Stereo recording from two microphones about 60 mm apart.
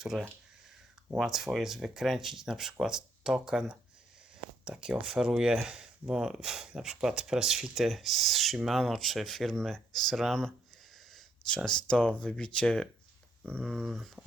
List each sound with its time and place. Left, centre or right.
0.0 s speech: centre
13.4 s speech: left
13.8 s speech: centre